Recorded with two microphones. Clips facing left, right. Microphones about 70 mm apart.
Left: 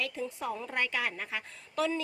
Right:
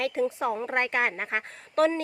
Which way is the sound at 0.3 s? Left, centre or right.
Right.